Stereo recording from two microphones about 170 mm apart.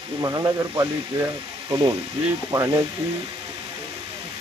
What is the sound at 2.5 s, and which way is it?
Speech, 20° right (ahead or behind).